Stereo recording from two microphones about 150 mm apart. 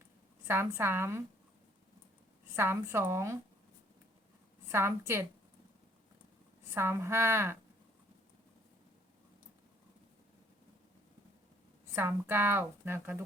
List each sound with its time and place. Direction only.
0.4 s a woman's voice: 15° right (ahead or behind)
2.6 s a woman's voice: 15° right (ahead or behind)
4.7 s a woman's voice: 15° right (ahead or behind)
6.7 s a woman's voice: 15° right (ahead or behind)
11.9 s a woman's voice: 15° right (ahead or behind)